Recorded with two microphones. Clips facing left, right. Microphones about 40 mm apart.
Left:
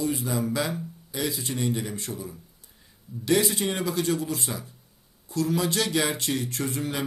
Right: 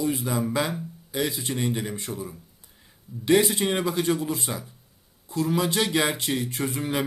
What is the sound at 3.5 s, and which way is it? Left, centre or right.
Speech, right.